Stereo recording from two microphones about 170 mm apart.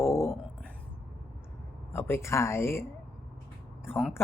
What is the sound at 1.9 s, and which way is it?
Speech, 15° left (ahead or behind).